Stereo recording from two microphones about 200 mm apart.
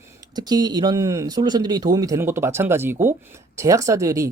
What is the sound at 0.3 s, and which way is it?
Speech, 20° right (ahead or behind).